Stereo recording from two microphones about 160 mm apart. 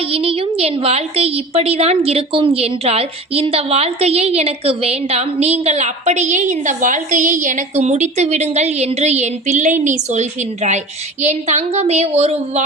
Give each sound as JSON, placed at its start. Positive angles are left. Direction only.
{"t": 0.1, "sound": "a woman's voice", "side_deg": -35}